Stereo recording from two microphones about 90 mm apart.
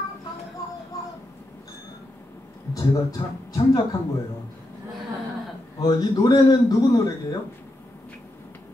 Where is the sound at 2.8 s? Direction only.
40° left (ahead or behind).